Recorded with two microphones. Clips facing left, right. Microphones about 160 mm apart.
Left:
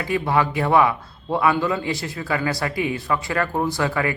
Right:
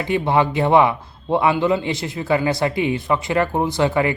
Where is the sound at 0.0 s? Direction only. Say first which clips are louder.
Right 3 dB; 25° right (ahead or behind).